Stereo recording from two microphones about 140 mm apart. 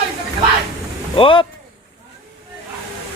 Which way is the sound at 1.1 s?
40° left (ahead or behind).